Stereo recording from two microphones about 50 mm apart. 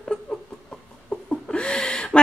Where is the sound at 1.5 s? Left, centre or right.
Left.